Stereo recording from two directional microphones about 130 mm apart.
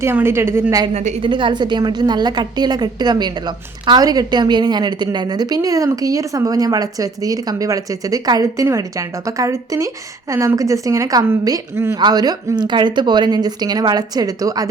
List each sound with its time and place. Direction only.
0.0 s a woman's voice: 20° right (ahead or behind)
0.9 s a woman's voice: 60° right (ahead or behind)
1.2 s a woman's voice: 40° right (ahead or behind); by 11.9 s 20° right (ahead or behind)
11.9 s a woman's voice: 30° right (ahead or behind)